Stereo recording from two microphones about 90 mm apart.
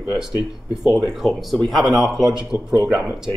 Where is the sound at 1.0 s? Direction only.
Centre (ahead or behind).